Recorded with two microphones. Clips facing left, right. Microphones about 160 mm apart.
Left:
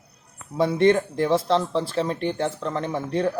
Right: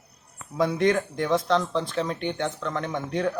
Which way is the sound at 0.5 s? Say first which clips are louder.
Left 4 dB; 30° left (ahead or behind).